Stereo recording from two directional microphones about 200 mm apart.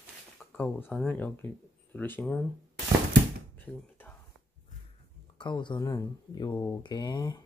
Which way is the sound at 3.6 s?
10° left (ahead or behind).